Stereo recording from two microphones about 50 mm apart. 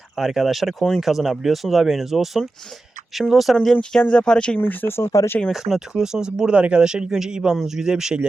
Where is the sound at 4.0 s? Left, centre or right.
Centre.